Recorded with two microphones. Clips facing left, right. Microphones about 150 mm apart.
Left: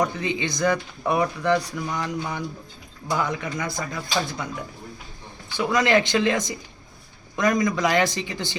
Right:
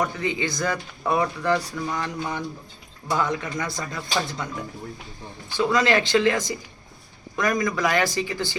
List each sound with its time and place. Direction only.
0.0 s speech: 20° left (ahead or behind)
5.5 s speech: 15° left (ahead or behind)